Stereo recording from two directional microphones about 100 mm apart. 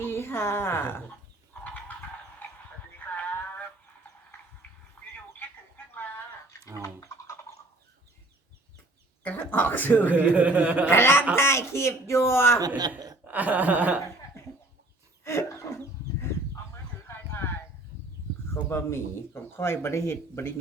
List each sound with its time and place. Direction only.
0.0 s a woman's voice: 25° left (ahead or behind)
3.2 s synthetic singing: 15° left (ahead or behind)
5.1 s a sound: 15° left (ahead or behind)
6.8 s a sound: 30° left (ahead or behind)
9.2 s speech: 20° left (ahead or behind)
10.1 s speech: 15° right (ahead or behind)
10.8 s speech: 25° left (ahead or behind)
12.6 s a woman's voice: 40° right (ahead or behind)
13.2 s speech: 15° right (ahead or behind)
15.2 s a sound: 25° left (ahead or behind)
18.4 s speech: 25° left (ahead or behind)